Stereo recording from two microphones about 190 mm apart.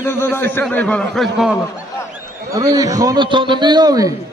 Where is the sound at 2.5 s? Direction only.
20° right (ahead or behind).